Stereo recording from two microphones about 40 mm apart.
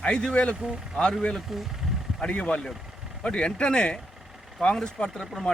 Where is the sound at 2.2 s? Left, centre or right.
Left.